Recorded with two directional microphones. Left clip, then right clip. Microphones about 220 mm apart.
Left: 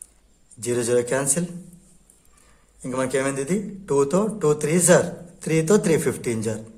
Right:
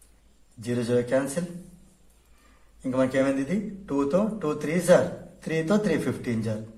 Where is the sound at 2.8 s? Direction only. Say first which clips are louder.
Even; 45° left (ahead or behind).